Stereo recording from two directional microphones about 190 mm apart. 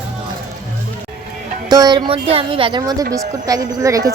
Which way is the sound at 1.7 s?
20° right (ahead or behind).